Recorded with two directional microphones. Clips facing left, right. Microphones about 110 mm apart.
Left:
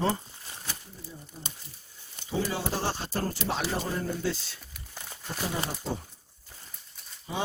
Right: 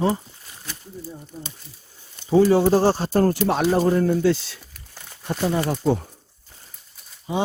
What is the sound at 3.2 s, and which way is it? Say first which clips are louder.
Speech: right 11 dB; 55° right (ahead or behind).